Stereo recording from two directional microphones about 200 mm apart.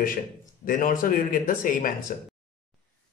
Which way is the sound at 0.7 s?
45° left (ahead or behind).